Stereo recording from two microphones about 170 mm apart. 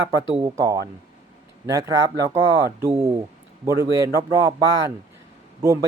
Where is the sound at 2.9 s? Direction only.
40° right (ahead or behind).